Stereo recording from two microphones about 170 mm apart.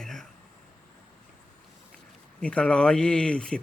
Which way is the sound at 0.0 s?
5° left (ahead or behind).